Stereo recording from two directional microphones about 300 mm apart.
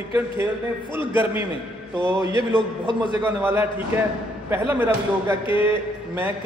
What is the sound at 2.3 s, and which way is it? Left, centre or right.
Speech, centre.